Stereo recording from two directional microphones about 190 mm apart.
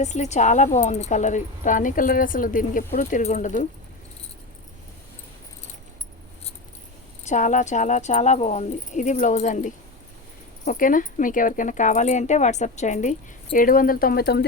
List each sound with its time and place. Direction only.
0.0 s speech: 35° left (ahead or behind)
7.3 s speech: 40° left (ahead or behind); by 14.4 s 55° left (ahead or behind)